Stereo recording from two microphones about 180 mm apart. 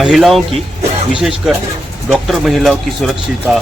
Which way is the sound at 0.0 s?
Centre (ahead or behind).